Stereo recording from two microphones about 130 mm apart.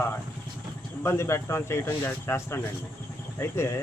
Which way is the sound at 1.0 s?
20° left (ahead or behind).